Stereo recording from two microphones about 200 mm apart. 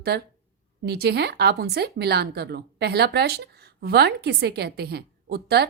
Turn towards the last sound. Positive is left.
turn(degrees=-55)  # may be behind; listen again after turning